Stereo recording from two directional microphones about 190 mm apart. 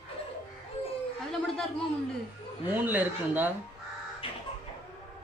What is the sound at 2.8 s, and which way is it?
Speech, 10° right (ahead or behind).